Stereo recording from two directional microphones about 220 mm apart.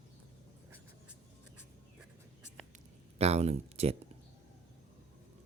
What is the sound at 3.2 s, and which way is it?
Speech, 30° right (ahead or behind).